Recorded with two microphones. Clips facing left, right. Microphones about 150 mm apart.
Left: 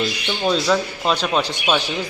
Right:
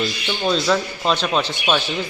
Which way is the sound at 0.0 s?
5° left (ahead or behind).